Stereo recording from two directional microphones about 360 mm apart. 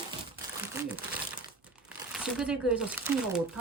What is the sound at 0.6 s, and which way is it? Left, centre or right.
Crumpling, centre.